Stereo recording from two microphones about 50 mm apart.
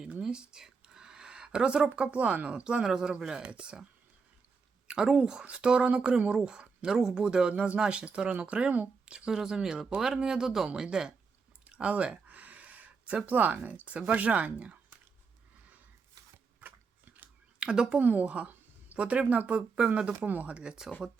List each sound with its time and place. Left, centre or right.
0.0 s a sound: centre
2.0 s speech: right
3.4 s speech: right
4.9 s speech: centre
11.6 s a sound: right
13.7 s speech: right
16.6 s a sound: right
17.6 s speech: centre
18.0 s a woman's voice: right
20.1 s a woman's voice: right
20.5 s speech: right